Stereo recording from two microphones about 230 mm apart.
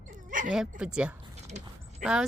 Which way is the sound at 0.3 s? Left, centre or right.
Right.